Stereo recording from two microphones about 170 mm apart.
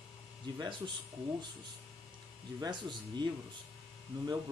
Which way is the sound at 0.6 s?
25° right (ahead or behind).